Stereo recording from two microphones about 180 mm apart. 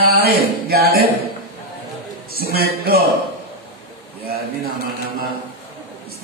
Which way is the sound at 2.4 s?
60° right (ahead or behind).